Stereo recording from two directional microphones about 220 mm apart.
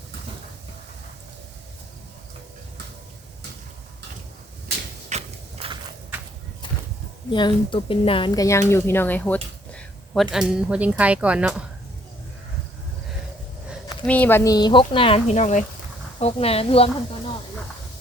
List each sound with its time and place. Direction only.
5.1 s mechanisms: 30° right (ahead or behind)
7.3 s a woman's voice: 20° left (ahead or behind); by 10.2 s 5° left (ahead or behind)
10.3 s a woman's voice: 5° right (ahead or behind)
14.1 s speech: 10° left (ahead or behind); by 16.9 s 25° left (ahead or behind)